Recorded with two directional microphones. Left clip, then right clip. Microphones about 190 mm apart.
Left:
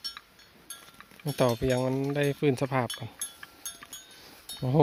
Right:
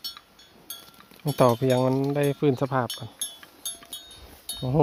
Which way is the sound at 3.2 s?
50° right (ahead or behind).